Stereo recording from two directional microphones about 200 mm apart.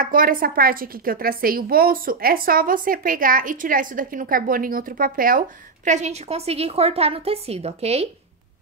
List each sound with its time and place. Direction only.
0.0 s a woman's voice: 45° right (ahead or behind)
5.9 s a woman's voice: 35° right (ahead or behind)